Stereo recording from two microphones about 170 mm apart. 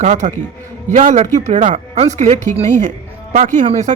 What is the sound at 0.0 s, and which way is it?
A man's voice, 45° right (ahead or behind).